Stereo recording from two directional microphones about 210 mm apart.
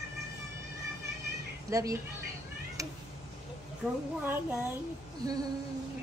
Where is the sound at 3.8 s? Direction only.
5° right (ahead or behind).